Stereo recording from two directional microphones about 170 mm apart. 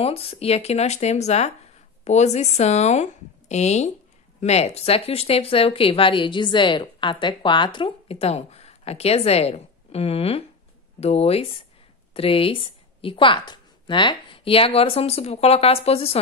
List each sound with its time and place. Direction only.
0.0 s a woman's voice: 35° left (ahead or behind)